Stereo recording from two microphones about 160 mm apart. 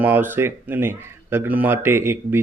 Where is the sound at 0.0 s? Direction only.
10° right (ahead or behind).